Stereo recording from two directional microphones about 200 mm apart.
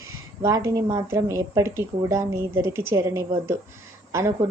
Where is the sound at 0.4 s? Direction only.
15° right (ahead or behind).